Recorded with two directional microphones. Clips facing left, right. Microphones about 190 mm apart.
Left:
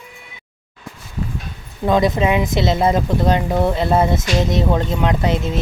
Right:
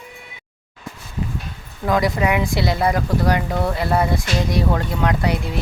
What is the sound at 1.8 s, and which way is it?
Speech, 20° left (ahead or behind).